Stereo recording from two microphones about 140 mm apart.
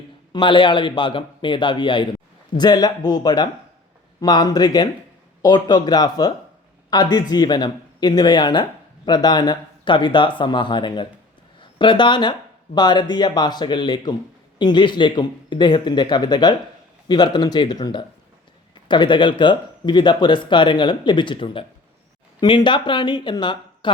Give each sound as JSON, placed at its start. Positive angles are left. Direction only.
{"t": 0.3, "sound": "a man's voice", "side_deg": 35}